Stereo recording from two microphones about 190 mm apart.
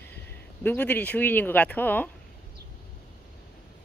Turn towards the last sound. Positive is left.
turn(degrees=10)  # may be behind; listen again after turning